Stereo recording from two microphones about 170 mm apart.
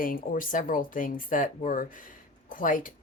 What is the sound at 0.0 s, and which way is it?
A woman's voice, 55° left (ahead or behind).